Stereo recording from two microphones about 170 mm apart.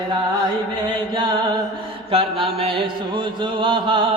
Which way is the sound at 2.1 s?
30° right (ahead or behind).